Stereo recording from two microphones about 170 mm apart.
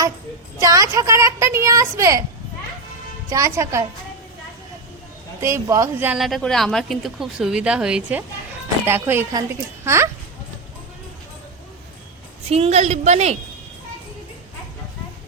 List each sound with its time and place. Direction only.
0.6 s speech: 20° right (ahead or behind)
3.2 s speech: 20° right (ahead or behind)
5.4 s speech: 15° right (ahead or behind)
6.1 s a woman's voice: centre (ahead or behind)
12.5 s a woman's voice: 40° right (ahead or behind)